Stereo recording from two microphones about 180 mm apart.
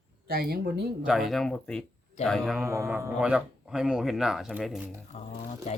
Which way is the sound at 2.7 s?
15° right (ahead or behind).